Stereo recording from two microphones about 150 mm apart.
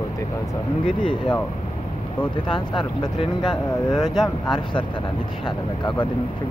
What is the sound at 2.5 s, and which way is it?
Speech, 30° left (ahead or behind).